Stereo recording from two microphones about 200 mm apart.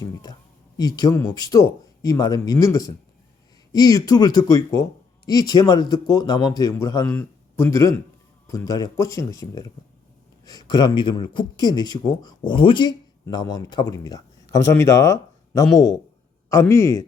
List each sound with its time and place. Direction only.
0.0 s speech: 20° left (ahead or behind)